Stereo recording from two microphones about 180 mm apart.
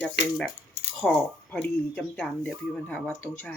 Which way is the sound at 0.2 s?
75° left (ahead or behind).